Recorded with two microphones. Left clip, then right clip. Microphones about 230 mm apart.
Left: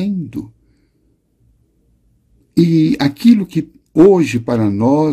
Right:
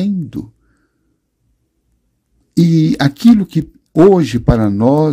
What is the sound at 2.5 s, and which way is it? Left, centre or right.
Speech, right.